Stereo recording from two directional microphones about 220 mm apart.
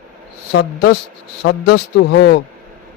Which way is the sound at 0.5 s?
50° left (ahead or behind).